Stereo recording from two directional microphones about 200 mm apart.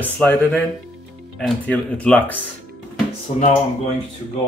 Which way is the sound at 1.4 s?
5° left (ahead or behind).